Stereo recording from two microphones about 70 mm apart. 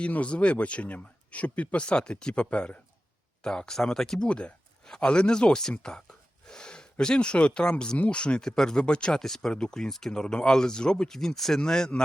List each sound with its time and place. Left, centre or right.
0.0 s speech: centre